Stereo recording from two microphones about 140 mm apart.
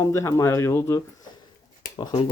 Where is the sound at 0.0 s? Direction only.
20° left (ahead or behind).